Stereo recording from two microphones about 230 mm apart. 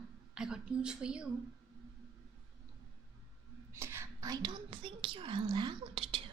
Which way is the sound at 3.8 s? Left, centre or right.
Centre.